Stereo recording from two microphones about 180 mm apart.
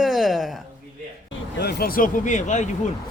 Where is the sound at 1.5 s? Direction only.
60° left (ahead or behind); by 2.6 s 40° left (ahead or behind).